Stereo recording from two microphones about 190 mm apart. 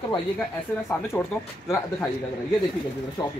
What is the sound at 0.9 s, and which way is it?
Speech, 10° left (ahead or behind).